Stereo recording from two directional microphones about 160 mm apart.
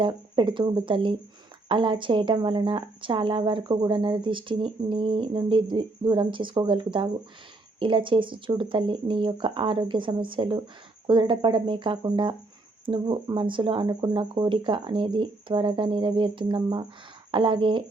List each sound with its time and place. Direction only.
0.0 s speech: 30° right (ahead or behind)